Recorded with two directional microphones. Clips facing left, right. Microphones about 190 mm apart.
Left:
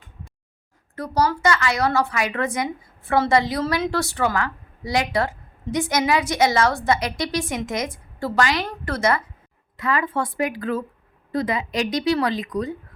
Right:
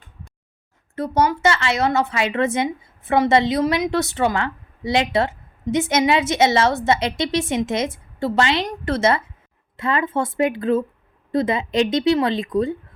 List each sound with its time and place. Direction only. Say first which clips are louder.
0.9 s a woman's voice: right 2 dB; 25° right (ahead or behind)